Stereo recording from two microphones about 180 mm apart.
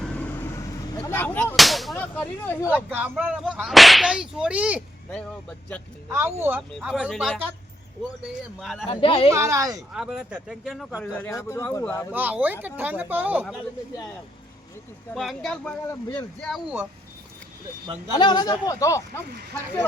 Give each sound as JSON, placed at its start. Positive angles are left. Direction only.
{"t": 0.0, "sound": "artillery fire", "side_deg": 5}
{"t": 1.5, "sound": "whip", "side_deg": 0}
{"t": 2.6, "sound": "whip", "side_deg": -10}
{"t": 6.1, "sound": "speech", "side_deg": -15}
{"t": 6.6, "sound": "whip", "side_deg": 0}
{"t": 8.5, "sound": "whip", "side_deg": 0}
{"t": 8.9, "sound": "speech", "side_deg": 30}
{"t": 9.3, "sound": "speech", "side_deg": -15}
{"t": 9.9, "sound": "speech", "side_deg": 0}
{"t": 12.1, "sound": "speech", "side_deg": -10}
{"t": 15.1, "sound": "whip", "side_deg": 0}
{"t": 18.1, "sound": "speech", "side_deg": 25}
{"t": 19.3, "sound": "speech", "side_deg": -65}